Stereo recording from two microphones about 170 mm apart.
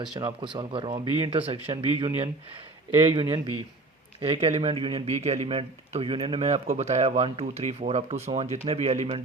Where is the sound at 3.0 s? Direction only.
30° right (ahead or behind).